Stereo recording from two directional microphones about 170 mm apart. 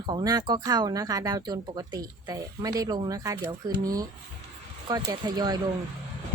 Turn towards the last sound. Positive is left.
turn(degrees=-25)  # may be behind; listen again after turning